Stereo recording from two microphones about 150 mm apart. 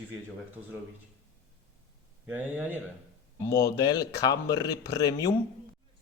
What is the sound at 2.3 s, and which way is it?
Speech, 10° right (ahead or behind).